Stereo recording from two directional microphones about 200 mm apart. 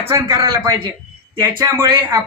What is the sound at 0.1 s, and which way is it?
A man's voice, 15° right (ahead or behind).